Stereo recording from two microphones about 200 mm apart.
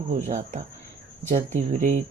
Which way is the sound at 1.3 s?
40° right (ahead or behind).